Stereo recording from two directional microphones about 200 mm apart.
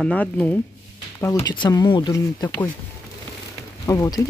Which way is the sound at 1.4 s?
20° left (ahead or behind).